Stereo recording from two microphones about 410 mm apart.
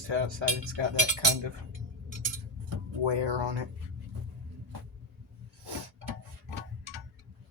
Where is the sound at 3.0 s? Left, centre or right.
Right.